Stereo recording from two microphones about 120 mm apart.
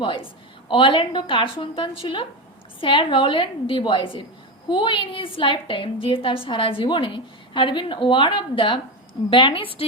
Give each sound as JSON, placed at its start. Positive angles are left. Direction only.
{"t": 0.0, "sound": "a woman's voice", "side_deg": 45}